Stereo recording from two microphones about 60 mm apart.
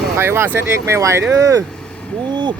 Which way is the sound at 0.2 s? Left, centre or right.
Right.